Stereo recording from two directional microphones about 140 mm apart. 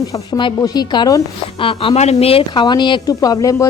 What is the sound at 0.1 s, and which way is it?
A woman's voice, 30° left (ahead or behind).